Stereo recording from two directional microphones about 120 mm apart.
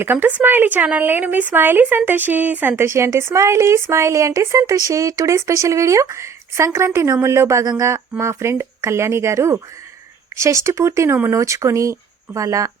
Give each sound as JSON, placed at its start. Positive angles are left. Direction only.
{"t": 0.0, "sound": "a woman's voice", "side_deg": -15}